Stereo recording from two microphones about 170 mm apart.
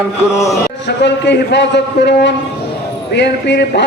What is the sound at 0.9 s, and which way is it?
A man's voice, 90° left.